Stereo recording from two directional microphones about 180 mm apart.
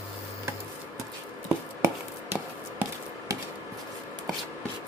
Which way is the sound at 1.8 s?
10° right (ahead or behind).